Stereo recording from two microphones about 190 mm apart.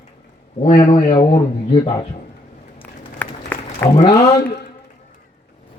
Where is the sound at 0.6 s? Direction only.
30° left (ahead or behind).